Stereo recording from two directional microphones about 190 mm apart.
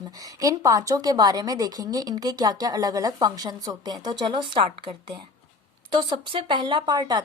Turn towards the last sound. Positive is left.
turn(degrees=-20)  # may be behind; listen again after turning